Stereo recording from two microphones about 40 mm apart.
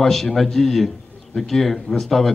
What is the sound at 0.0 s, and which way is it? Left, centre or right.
A man's voice, centre.